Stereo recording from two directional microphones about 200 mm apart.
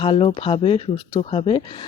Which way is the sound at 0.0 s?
25° left (ahead or behind).